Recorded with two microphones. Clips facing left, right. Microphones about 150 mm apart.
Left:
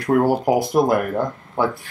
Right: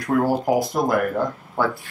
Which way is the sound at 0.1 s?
20° left (ahead or behind).